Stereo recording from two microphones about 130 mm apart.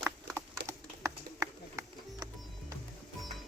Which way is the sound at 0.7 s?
25° right (ahead or behind).